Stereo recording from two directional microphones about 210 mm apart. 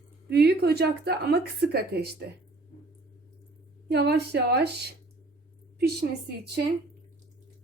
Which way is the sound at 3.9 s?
50° right (ahead or behind).